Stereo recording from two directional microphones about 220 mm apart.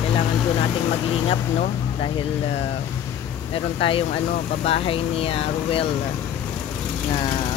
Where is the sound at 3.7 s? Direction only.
25° left (ahead or behind).